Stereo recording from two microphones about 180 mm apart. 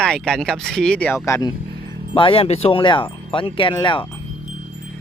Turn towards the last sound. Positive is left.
turn(degrees=25)  # may be behind; listen again after turning